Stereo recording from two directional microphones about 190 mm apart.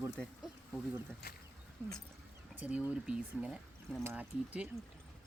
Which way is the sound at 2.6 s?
5° right (ahead or behind).